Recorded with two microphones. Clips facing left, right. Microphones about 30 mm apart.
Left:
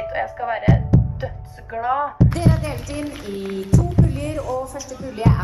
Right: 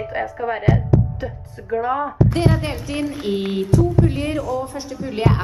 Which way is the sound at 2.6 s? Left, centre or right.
Right.